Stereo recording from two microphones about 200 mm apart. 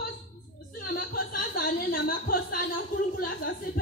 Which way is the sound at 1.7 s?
45° left (ahead or behind).